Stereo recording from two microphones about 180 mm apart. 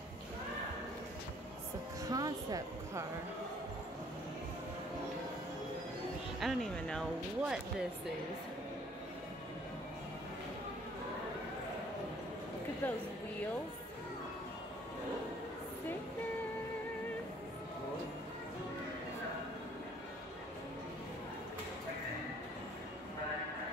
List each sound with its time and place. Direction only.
2.0 s music: 20° right (ahead or behind)
6.4 s speech: centre (ahead or behind)
12.8 s speech: 10° left (ahead or behind)